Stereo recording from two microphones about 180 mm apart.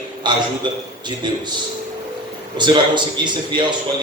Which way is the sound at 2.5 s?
25° right (ahead or behind).